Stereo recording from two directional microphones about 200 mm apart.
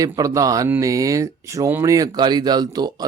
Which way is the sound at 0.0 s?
15° right (ahead or behind).